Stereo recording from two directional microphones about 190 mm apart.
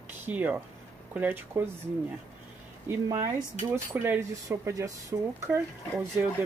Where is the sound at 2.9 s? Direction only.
20° right (ahead or behind).